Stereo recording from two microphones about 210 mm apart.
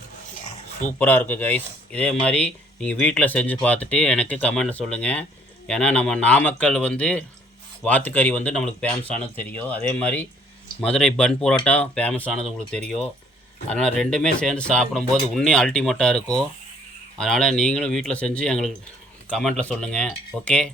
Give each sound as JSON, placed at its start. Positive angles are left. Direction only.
{"t": 0.9, "sound": "speech", "side_deg": 10}